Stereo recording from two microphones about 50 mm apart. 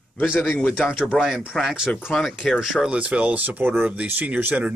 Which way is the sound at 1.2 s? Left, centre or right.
Centre.